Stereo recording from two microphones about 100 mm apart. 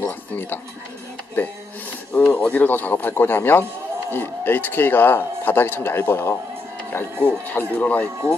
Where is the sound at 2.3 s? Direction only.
15° left (ahead or behind).